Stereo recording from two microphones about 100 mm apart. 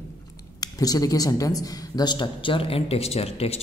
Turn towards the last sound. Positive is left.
turn(degrees=90)